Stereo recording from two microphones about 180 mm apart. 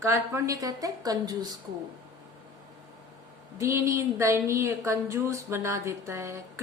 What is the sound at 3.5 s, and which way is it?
A woman's voice, 15° right (ahead or behind).